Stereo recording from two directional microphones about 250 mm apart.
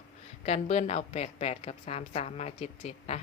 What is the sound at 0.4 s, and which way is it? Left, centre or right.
A woman's voice, left.